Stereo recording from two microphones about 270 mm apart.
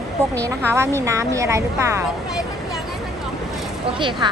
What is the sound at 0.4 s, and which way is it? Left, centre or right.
Speech, centre.